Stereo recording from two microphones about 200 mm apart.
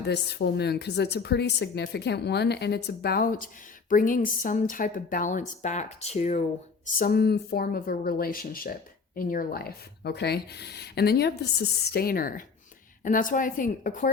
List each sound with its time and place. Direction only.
0.0 s a woman's voice: 60° left (ahead or behind); by 6.4 s 35° left (ahead or behind)
6.8 s a woman's voice: 50° left (ahead or behind)